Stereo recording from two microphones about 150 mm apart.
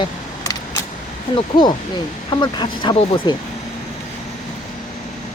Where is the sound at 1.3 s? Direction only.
30° left (ahead or behind).